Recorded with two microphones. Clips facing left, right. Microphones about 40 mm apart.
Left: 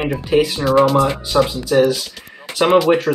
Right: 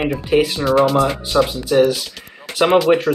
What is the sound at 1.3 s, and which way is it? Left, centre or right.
Speech, left.